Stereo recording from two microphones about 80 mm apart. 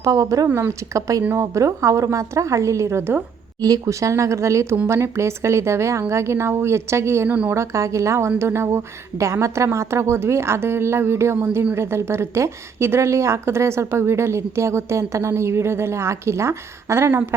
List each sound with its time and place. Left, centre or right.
0.0 s a woman's voice: right
7.3 s a woman's voice: centre
7.5 s a woman's voice: right